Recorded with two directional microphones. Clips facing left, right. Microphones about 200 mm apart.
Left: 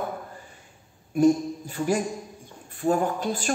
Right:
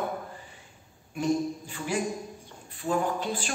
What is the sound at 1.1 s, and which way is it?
A man's voice, 45° left (ahead or behind).